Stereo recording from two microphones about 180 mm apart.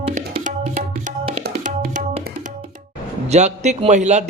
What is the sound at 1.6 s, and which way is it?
Music, 45° right (ahead or behind).